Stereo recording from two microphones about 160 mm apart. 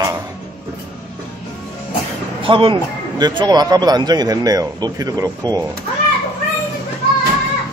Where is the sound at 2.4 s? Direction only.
30° right (ahead or behind).